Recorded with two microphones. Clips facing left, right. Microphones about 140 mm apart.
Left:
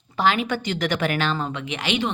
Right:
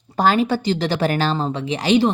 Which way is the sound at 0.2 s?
40° right (ahead or behind).